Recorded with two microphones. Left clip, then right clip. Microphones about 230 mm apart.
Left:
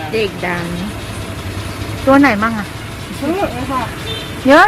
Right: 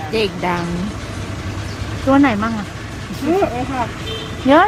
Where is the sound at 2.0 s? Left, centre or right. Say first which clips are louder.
Left 4 dB; centre.